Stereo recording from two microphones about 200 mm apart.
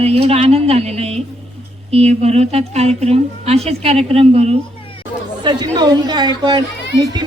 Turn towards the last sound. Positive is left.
turn(degrees=-20)  # may be behind; listen again after turning